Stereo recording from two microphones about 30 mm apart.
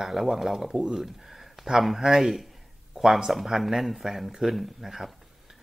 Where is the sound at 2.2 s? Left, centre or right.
Centre.